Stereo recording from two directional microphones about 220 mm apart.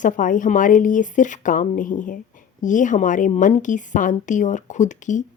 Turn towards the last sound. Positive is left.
turn(degrees=35)  # may be behind; listen again after turning